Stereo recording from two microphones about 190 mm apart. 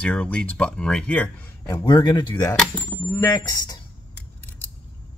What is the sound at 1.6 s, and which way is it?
Speech, 20° left (ahead or behind).